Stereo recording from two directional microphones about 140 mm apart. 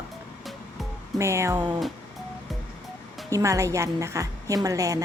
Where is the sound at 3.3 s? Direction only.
20° right (ahead or behind).